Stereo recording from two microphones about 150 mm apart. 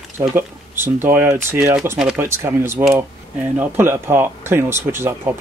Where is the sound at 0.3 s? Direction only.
15° right (ahead or behind).